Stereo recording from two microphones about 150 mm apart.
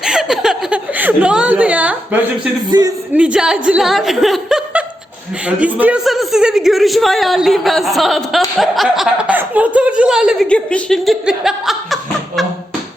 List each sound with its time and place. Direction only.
0.0 s a sound: 5° right (ahead or behind)
2.6 s speech: 25° right (ahead or behind)
3.2 s a man's voice: 5° right (ahead or behind)
10.5 s a man's voice: 5° left (ahead or behind)